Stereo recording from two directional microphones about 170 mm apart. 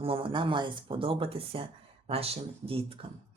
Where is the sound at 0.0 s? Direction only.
30° right (ahead or behind).